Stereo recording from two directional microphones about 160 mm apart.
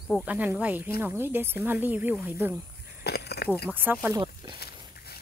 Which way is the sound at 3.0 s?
90° left.